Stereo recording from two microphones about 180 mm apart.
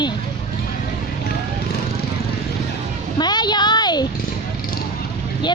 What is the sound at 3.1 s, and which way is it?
Speech, 25° left (ahead or behind).